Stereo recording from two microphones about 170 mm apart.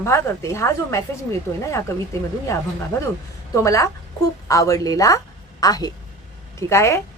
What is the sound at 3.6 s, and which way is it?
A woman's voice, 20° left (ahead or behind).